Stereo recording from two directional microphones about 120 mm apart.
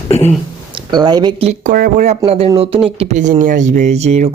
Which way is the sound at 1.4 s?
80° right.